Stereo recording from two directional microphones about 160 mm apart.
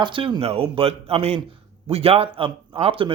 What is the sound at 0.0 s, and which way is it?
Speech, 30° right (ahead or behind).